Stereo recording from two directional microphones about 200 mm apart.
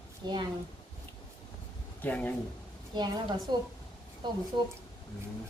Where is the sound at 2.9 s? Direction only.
20° right (ahead or behind).